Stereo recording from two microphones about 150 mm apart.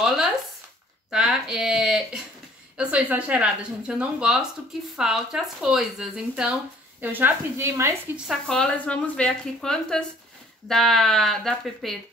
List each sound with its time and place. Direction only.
1.1 s speech: 5° right (ahead or behind)
8.3 s speech: 5° left (ahead or behind)